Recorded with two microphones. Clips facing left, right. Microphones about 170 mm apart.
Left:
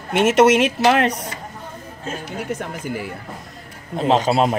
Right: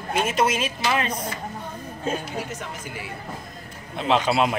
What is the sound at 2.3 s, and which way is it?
Speech, 55° left (ahead or behind).